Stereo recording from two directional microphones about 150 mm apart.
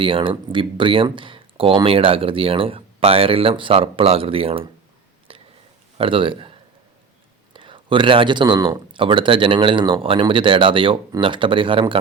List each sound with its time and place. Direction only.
0.0 s speech: 35° right (ahead or behind)
5.3 s whispering: 35° right (ahead or behind)
6.0 s a man's voice: 35° right (ahead or behind)